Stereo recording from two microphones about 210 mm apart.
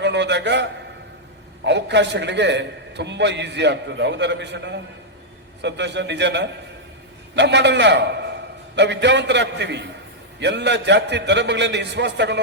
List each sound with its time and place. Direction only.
0.0 s a man's voice: 55° right (ahead or behind)